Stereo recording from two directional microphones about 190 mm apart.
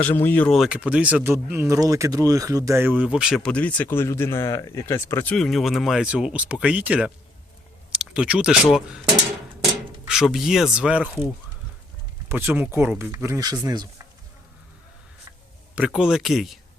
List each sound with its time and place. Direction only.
0.0 s speech: 10° left (ahead or behind)
10.1 s speech: centre (ahead or behind)
12.3 s speech: 10° right (ahead or behind)
15.7 s speech: 5° right (ahead or behind)